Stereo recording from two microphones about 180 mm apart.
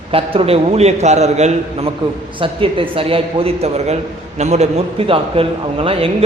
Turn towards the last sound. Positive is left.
turn(degrees=-30)  # may be behind; listen again after turning